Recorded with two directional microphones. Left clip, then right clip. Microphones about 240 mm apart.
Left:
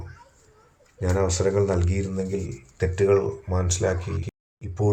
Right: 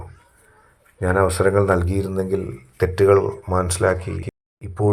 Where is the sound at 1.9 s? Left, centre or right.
Right.